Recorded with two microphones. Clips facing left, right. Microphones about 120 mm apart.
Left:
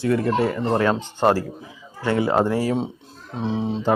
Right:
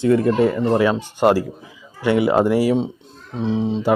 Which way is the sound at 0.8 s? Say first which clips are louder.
Right 3 dB; 10° right (ahead or behind).